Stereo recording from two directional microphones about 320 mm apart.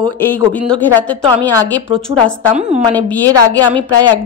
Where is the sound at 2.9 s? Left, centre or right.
Centre.